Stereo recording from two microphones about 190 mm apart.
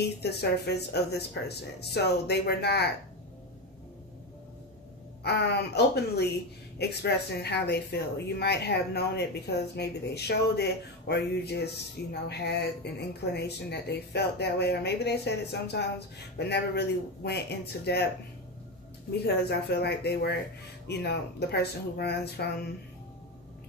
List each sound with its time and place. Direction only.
0.2 s speech: 60° left (ahead or behind)
5.2 s speech: 60° left (ahead or behind)
19.2 s speech: 60° left (ahead or behind)